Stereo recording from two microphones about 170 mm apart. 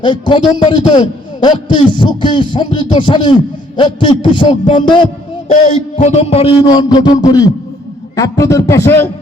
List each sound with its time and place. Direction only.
0.0 s rapping: 30° left (ahead or behind)
5.7 s rapping: 40° left (ahead or behind); by 7.5 s 20° left (ahead or behind)
8.1 s a man's voice: 20° left (ahead or behind)